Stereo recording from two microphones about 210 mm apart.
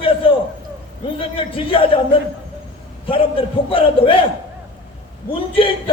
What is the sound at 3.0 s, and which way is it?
A man's voice, 25° left (ahead or behind).